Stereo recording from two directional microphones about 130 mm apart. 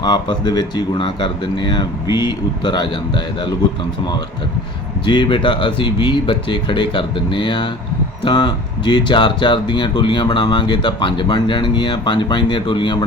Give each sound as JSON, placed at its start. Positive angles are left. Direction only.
{"t": 0.0, "sound": "speech", "side_deg": 35}
{"t": 5.0, "sound": "speech", "side_deg": 35}